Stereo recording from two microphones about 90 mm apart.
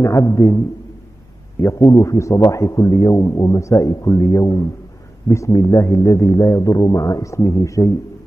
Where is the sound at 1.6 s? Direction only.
35° left (ahead or behind).